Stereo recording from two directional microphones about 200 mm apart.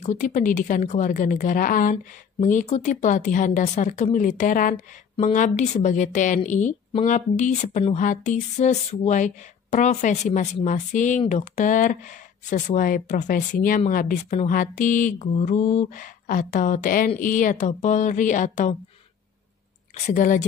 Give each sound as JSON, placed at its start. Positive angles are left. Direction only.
{"t": 0.0, "sound": "a woman's voice", "side_deg": 35}
{"t": 20.1, "sound": "a woman's voice", "side_deg": 40}